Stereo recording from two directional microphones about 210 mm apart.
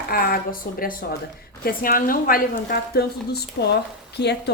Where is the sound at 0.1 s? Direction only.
45° left (ahead or behind).